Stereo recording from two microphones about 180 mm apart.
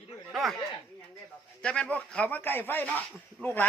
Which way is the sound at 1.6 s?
5° left (ahead or behind).